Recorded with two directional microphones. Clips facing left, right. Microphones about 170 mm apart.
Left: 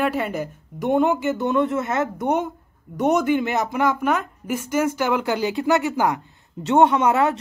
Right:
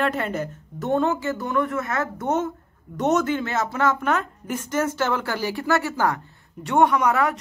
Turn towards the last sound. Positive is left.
turn(degrees=25)  # may be behind; listen again after turning